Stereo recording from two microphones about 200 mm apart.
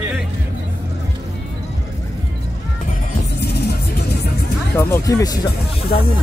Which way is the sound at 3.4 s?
55° left (ahead or behind).